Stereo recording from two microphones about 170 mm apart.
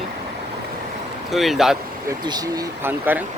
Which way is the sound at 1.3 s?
Centre (ahead or behind).